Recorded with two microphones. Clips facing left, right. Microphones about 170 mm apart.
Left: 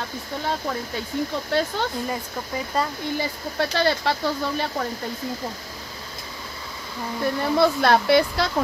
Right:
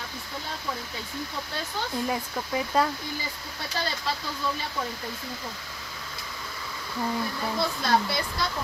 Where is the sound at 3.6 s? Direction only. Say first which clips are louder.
Left 11 dB; 75° left (ahead or behind).